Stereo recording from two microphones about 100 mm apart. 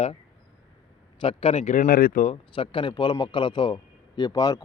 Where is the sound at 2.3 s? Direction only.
60° left (ahead or behind).